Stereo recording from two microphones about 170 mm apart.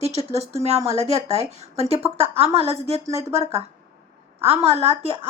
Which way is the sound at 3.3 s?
35° right (ahead or behind).